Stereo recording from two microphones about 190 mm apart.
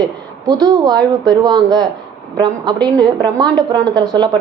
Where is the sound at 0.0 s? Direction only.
20° right (ahead or behind).